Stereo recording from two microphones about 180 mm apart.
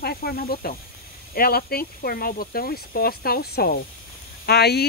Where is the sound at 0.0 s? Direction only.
60° left (ahead or behind).